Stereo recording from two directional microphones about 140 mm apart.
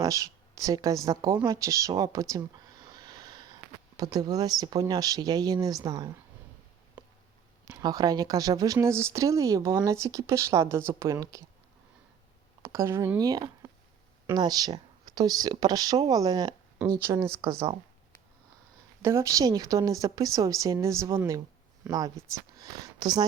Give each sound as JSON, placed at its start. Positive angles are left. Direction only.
{"t": 0.0, "sound": "speech", "side_deg": -25}
{"t": 2.8, "sound": "a sound", "side_deg": -30}
{"t": 3.9, "sound": "speech", "side_deg": -25}
{"t": 7.0, "sound": "a sound", "side_deg": -10}
{"t": 7.7, "sound": "speech", "side_deg": -30}
{"t": 12.6, "sound": "speech", "side_deg": -20}
{"t": 19.0, "sound": "speech", "side_deg": -20}